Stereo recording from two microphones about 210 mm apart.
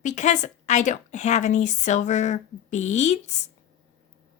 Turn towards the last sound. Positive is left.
turn(degrees=35)  # may be behind; listen again after turning